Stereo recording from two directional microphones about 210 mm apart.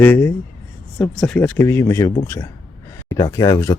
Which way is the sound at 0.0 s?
10° left (ahead or behind).